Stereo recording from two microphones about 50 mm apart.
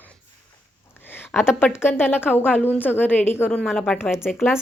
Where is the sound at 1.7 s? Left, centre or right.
Left.